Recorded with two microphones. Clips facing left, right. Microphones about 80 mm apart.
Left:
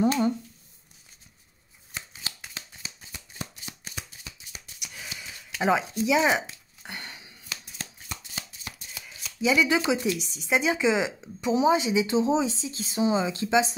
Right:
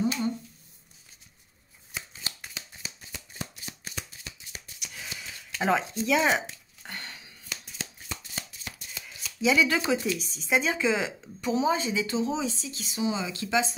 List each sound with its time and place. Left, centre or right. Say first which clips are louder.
0.0 s speech: left 5 dB; left
4.7 s a sound: left 1 dB; centre
9.0 s shuffling cards: even; centre
9.7 s speech: left 2 dB; centre